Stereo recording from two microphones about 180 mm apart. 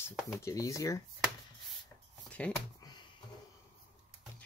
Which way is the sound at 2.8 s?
20° left (ahead or behind).